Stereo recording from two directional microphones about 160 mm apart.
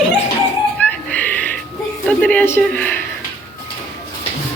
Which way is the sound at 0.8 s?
10° left (ahead or behind).